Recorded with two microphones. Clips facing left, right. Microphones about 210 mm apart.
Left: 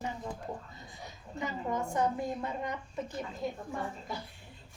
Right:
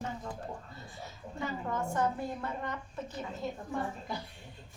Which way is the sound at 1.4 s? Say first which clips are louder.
Left 1 dB; 15° left (ahead or behind).